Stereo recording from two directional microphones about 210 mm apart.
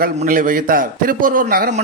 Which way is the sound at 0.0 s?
40° right (ahead or behind).